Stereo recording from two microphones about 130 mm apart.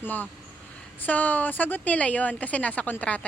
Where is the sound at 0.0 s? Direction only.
15° left (ahead or behind).